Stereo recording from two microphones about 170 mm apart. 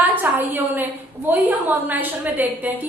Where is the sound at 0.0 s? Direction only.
10° right (ahead or behind).